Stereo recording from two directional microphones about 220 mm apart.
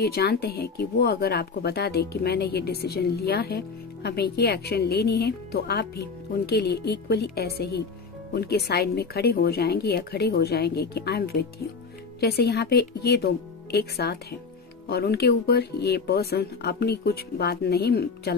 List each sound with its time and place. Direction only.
0.0 s speech: 45° left (ahead or behind)